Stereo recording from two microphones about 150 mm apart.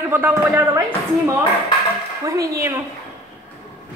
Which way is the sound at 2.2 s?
20° right (ahead or behind).